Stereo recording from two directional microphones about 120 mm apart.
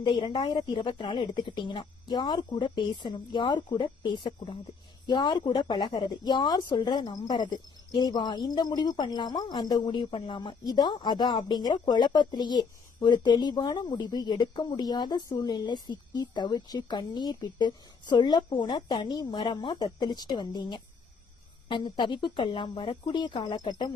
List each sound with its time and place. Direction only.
0.0 s speech: 40° left (ahead or behind)